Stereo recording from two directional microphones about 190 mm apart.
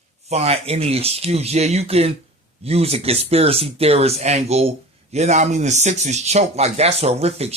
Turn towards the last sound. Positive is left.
turn(degrees=-35)  # may be behind; listen again after turning